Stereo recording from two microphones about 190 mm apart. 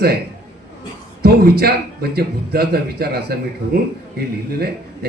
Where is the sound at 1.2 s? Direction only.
55° right (ahead or behind).